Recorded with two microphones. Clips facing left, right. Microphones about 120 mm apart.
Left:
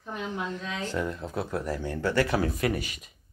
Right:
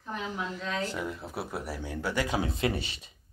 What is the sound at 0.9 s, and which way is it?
Speech, 10° right (ahead or behind).